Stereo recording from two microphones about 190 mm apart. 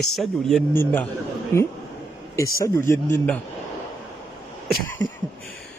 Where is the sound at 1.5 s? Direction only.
15° left (ahead or behind).